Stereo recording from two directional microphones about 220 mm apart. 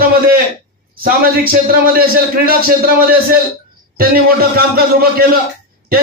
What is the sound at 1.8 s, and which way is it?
A man's voice, 40° right (ahead or behind).